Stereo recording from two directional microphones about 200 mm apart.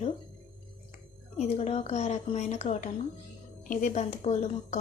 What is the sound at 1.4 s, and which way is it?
Speech, 35° left (ahead or behind).